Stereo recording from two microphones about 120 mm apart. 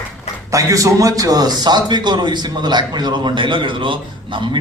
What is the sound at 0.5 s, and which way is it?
A man's voice, 30° right (ahead or behind).